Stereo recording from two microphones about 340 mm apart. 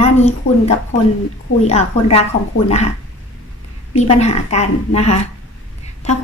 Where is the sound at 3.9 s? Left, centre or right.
Centre.